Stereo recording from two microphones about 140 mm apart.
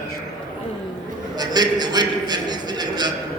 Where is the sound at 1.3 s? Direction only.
30° right (ahead or behind).